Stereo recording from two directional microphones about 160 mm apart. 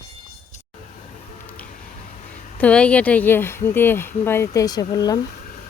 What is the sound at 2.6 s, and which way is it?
Speech, 5° left (ahead or behind).